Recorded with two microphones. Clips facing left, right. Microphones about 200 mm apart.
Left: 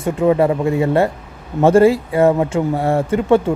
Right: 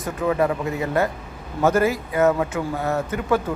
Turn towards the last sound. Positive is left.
turn(degrees=25)  # may be behind; listen again after turning